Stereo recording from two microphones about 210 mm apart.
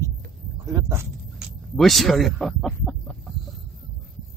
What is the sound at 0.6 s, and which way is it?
Speech, 15° right (ahead or behind).